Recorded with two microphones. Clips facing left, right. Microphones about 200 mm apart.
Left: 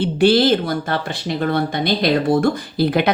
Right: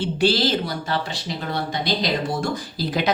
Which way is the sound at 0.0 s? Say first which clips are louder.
Left 6 dB; 55° left (ahead or behind).